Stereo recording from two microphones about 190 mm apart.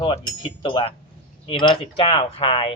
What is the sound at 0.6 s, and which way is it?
Speech, 25° left (ahead or behind).